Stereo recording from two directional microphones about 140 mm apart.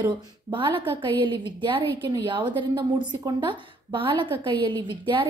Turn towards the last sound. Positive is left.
turn(degrees=-35)  # may be behind; listen again after turning